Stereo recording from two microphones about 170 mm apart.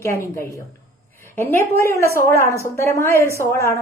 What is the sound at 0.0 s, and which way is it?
A woman's voice, 15° left (ahead or behind).